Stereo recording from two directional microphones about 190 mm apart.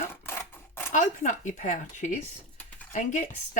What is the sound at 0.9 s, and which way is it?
Speech, 40° left (ahead or behind).